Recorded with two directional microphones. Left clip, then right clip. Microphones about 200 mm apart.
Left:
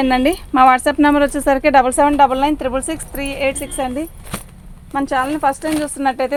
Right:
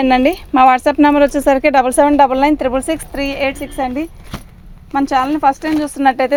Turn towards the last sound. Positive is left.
turn(degrees=-50)  # may be behind; listen again after turning